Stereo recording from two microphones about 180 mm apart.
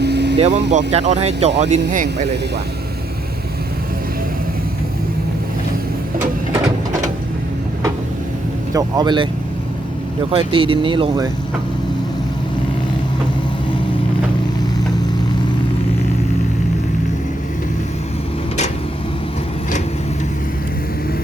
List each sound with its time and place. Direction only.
0.0 s vehicle: 70° right (ahead or behind)
0.3 s speech: 35° right (ahead or behind)
8.7 s speech: 25° right (ahead or behind)
10.3 s speech: 30° right (ahead or behind)